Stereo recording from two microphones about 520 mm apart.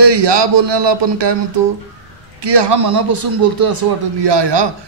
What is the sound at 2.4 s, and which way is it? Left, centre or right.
A man's voice, right.